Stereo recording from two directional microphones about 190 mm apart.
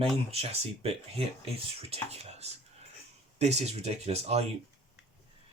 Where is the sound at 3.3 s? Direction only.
35° right (ahead or behind).